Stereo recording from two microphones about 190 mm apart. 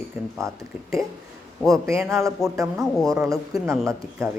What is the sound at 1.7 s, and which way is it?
Speech, 15° right (ahead or behind).